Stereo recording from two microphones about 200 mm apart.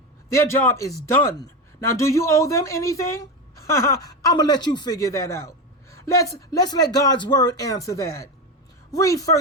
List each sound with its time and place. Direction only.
0.3 s a woman's voice: 15° left (ahead or behind)